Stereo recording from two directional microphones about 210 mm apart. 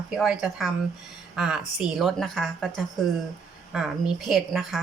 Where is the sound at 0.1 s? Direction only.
5° right (ahead or behind).